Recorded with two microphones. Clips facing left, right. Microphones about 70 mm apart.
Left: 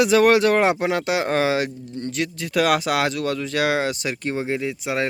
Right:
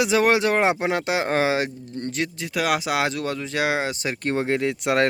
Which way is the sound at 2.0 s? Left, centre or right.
Right.